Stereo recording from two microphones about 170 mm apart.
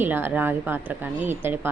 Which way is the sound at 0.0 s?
10° right (ahead or behind).